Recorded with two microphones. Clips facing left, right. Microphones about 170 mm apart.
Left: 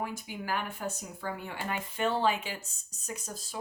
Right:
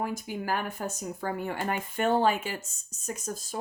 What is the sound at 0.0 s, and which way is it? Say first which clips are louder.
A woman's voice: right 5 dB; 45° right (ahead or behind).